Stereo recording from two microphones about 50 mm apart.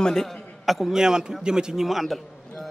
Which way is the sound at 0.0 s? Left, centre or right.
Centre.